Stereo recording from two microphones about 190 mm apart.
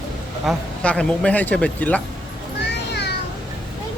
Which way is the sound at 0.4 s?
5° left (ahead or behind).